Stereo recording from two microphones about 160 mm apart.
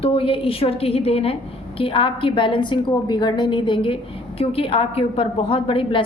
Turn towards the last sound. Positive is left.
turn(degrees=35)  # may be behind; listen again after turning